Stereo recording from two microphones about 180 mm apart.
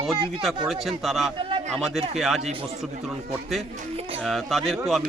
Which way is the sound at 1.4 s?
30° right (ahead or behind).